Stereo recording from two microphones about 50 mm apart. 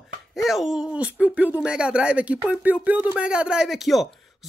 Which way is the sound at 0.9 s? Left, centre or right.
Right.